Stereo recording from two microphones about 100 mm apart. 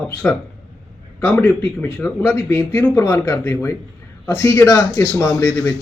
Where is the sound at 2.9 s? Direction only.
30° left (ahead or behind).